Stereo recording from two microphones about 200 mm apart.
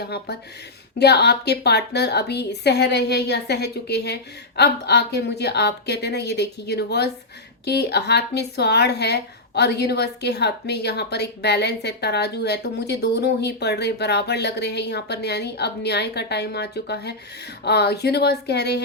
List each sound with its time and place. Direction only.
0.0 s speech: 55° left (ahead or behind)